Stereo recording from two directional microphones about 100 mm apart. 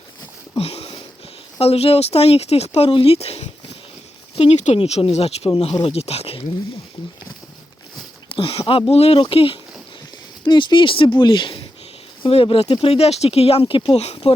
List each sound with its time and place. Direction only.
0.5 s sniff: 85° left
1.5 s speech: 80° left
4.4 s speech: 80° left
5.7 s speech: 80° left
8.3 s speech: 65° left (ahead or behind); by 9.2 s 90° left
9.2 s speech: 65° left (ahead or behind)
10.4 s speech: 50° left (ahead or behind); by 14.3 s 80° left